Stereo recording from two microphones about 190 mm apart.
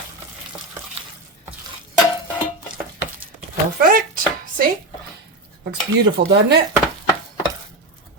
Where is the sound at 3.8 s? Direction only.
45° right (ahead or behind).